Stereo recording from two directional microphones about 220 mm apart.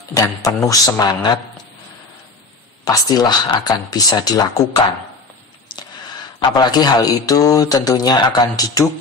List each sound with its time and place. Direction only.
0.1 s speech: 15° left (ahead or behind)
2.8 s speech: 15° left (ahead or behind)
6.5 s speech: 20° left (ahead or behind)